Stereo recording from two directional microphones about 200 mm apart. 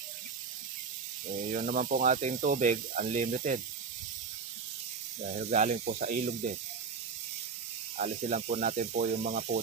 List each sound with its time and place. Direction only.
1.4 s speech: 40° right (ahead or behind)
5.2 s speech: 35° right (ahead or behind)
8.0 s speech: 35° right (ahead or behind)